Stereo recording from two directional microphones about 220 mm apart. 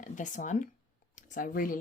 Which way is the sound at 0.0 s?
35° left (ahead or behind).